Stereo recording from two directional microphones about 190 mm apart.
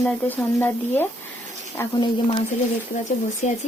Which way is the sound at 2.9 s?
45° left (ahead or behind).